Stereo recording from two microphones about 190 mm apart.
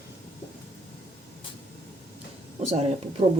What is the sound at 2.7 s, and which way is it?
Speech, 35° right (ahead or behind).